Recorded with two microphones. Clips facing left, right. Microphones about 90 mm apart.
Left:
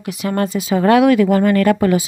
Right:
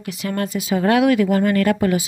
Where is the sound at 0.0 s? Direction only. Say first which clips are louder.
Left 4 dB; 20° left (ahead or behind).